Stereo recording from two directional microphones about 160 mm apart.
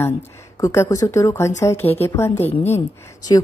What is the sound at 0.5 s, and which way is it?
Speech, 20° left (ahead or behind).